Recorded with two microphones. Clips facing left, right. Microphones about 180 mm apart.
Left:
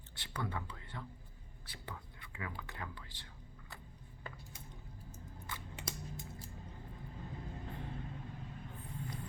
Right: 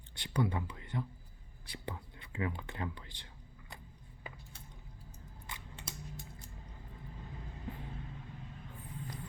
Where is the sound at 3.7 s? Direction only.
20° right (ahead or behind).